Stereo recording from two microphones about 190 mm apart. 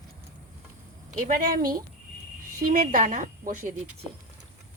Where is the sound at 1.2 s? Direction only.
50° right (ahead or behind).